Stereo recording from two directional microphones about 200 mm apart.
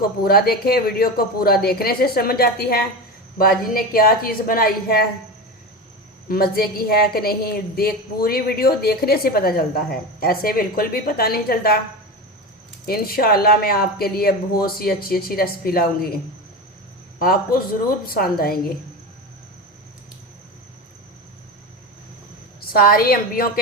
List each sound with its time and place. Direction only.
0.0 s a woman's voice: 50° left (ahead or behind)
6.2 s a woman's voice: 50° left (ahead or behind)
12.8 s a woman's voice: 50° left (ahead or behind)
18.0 s a woman's voice: 50° left (ahead or behind)
22.6 s a woman's voice: 50° left (ahead or behind)